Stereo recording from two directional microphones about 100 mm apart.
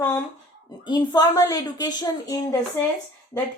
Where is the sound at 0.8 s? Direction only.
50° left (ahead or behind).